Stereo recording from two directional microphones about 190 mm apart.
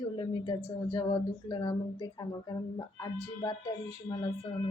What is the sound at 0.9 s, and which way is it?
Speech, 20° left (ahead or behind).